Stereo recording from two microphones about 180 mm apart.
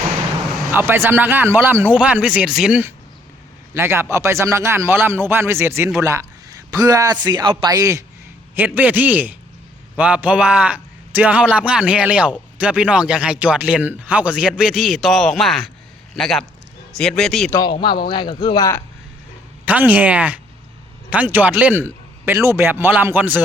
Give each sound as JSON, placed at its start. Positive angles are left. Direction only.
{"t": 0.7, "sound": "a man's voice", "side_deg": -10}
{"t": 17.5, "sound": "speech", "side_deg": 25}
{"t": 19.6, "sound": "a man's voice", "side_deg": -10}